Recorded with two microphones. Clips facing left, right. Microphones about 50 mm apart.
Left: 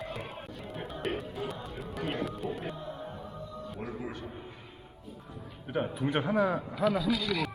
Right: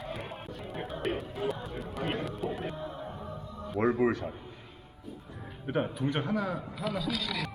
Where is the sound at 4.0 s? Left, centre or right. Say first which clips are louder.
Right 12 dB; right.